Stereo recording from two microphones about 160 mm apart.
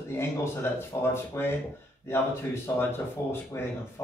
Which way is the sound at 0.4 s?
15° left (ahead or behind).